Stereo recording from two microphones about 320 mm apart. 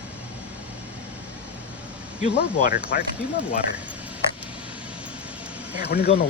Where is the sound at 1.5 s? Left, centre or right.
Centre.